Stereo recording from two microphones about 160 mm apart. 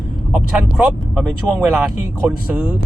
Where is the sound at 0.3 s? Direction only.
5° right (ahead or behind).